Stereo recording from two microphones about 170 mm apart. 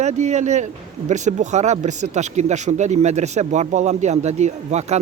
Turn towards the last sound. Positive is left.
turn(degrees=-40)  # may be behind; listen again after turning